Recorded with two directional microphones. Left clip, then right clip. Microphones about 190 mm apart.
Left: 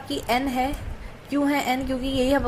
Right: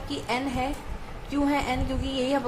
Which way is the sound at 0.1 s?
25° left (ahead or behind).